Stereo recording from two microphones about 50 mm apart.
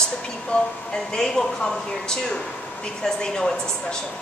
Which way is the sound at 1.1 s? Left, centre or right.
Centre.